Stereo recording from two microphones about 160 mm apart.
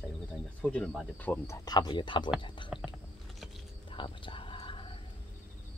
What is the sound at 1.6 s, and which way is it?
Speech, 25° left (ahead or behind).